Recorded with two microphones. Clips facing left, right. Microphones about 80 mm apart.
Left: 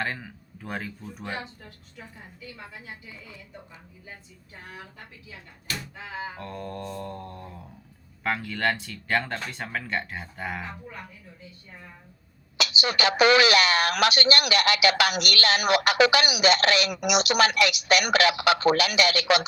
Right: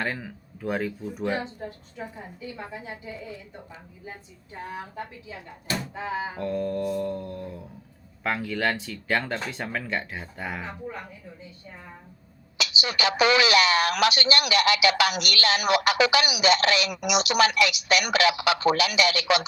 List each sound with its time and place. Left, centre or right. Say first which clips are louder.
0.0 s speech: right 1 dB; centre
1.4 s speech: right 6 dB; right
4.5 s speech: right 9 dB; right
6.3 s speech: right 8 dB; centre
10.6 s speech: right 3 dB; centre
12.5 s speech: left 2 dB; left